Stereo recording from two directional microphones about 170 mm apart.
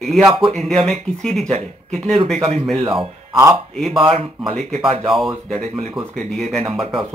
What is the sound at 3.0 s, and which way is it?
Speech, 25° right (ahead or behind).